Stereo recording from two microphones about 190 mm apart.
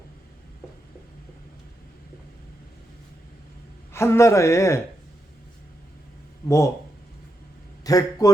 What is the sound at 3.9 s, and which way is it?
Speech, 15° left (ahead or behind).